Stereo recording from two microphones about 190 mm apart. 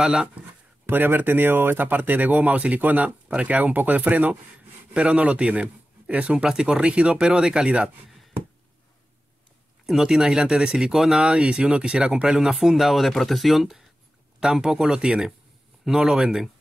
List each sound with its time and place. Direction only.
0.0 s speech: 5° right (ahead or behind)
9.8 s speech: 5° right (ahead or behind)